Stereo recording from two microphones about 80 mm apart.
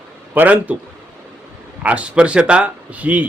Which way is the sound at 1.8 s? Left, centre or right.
Centre.